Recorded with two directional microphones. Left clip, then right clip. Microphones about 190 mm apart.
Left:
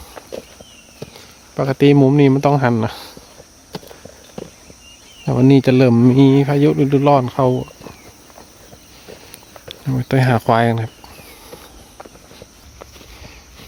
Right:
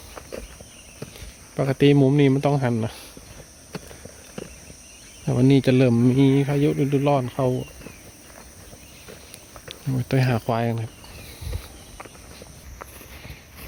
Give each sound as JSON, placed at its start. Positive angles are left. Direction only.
{"t": 0.9, "sound": "speech", "side_deg": 0}
{"t": 5.2, "sound": "speech", "side_deg": 5}
{"t": 9.6, "sound": "speech", "side_deg": 5}